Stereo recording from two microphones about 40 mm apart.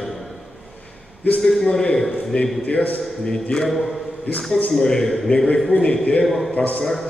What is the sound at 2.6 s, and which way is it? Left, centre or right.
Speech, left.